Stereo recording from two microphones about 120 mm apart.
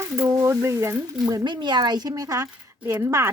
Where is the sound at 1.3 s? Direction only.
35° right (ahead or behind).